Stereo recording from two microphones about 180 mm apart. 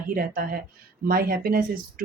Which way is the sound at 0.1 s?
50° right (ahead or behind).